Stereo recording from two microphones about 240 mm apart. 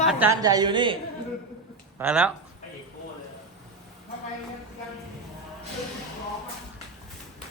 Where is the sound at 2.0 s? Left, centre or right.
Centre.